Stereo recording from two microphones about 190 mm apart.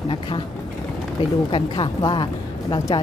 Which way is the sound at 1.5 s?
25° left (ahead or behind).